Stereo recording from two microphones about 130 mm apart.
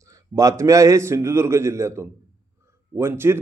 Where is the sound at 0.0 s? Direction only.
25° right (ahead or behind).